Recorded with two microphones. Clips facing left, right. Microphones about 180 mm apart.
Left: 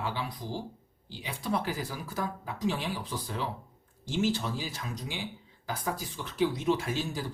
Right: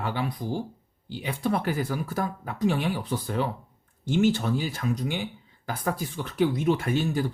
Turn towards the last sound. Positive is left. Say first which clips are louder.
# right 5 dB
turn(degrees=-60)  # may be behind; listen again after turning